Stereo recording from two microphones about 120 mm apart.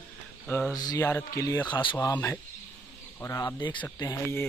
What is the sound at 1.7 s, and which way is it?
Speech, 45° left (ahead or behind).